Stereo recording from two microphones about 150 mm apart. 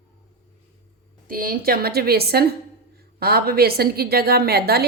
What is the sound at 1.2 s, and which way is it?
A woman's voice, 70° right (ahead or behind).